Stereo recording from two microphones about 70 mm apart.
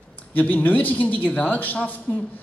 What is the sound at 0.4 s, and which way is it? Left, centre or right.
A man's voice, left.